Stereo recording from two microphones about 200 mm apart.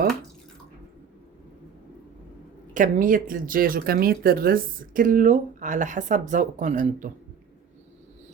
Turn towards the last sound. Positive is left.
turn(degrees=-40)  # may be behind; listen again after turning